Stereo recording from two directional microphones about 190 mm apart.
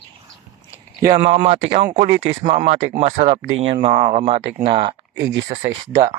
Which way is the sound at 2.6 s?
40° right (ahead or behind).